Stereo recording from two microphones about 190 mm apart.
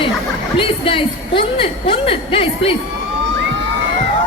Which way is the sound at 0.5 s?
30° left (ahead or behind).